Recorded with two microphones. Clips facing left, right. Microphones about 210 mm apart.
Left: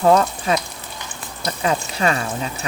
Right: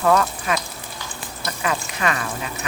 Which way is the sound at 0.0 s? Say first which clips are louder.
Left 3 dB; 30° left (ahead or behind).